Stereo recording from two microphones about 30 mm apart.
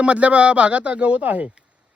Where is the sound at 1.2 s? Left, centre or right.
Right.